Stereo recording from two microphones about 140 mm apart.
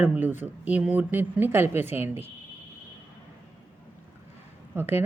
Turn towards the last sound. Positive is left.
turn(degrees=-15)  # may be behind; listen again after turning